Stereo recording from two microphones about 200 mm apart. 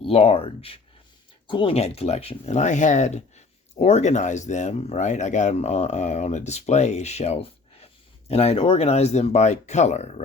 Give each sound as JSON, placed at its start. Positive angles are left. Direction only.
{"t": 0.0, "sound": "speech", "side_deg": 30}